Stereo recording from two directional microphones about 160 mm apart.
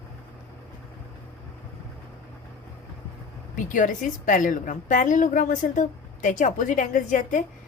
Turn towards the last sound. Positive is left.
turn(degrees=55)  # may be behind; listen again after turning